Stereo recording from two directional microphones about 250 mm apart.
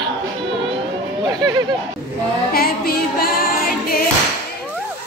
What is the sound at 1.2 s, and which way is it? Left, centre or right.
Speech, centre.